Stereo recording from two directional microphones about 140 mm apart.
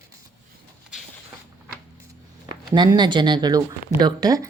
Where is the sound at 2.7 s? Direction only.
30° right (ahead or behind).